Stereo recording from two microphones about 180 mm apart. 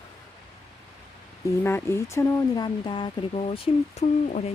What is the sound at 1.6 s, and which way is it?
Speech, 15° left (ahead or behind).